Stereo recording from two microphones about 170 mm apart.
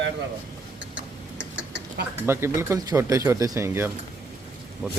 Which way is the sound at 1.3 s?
90° right.